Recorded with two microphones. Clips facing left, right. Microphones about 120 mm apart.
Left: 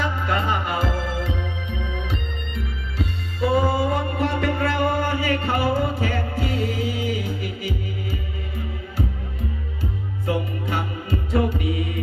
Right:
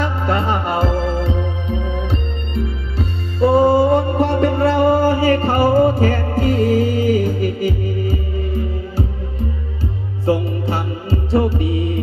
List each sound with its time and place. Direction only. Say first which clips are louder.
0.0 s music: right 4 dB; 25° right (ahead or behind)
10.2 s music: right 8 dB; 35° right (ahead or behind)